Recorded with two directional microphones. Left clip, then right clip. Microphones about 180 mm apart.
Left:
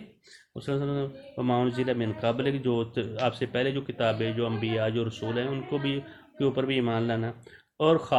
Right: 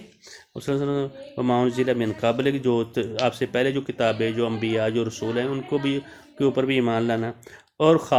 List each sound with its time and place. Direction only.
0.6 s speech: 40° right (ahead or behind)